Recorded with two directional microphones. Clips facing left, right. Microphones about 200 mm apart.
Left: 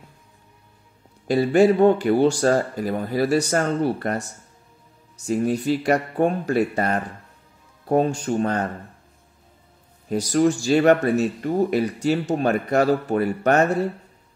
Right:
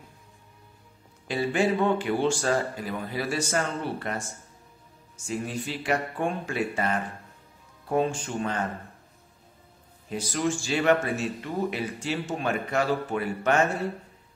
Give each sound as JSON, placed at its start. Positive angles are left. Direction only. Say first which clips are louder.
{"t": 1.2, "sound": "speech", "louder": "left 9 dB", "side_deg": 40}
{"t": 5.2, "sound": "speech", "louder": "left 10 dB", "side_deg": 40}
{"t": 10.0, "sound": "speech", "louder": "left 9 dB", "side_deg": 40}